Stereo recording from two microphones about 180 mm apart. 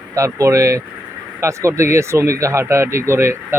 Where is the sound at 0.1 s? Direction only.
15° right (ahead or behind).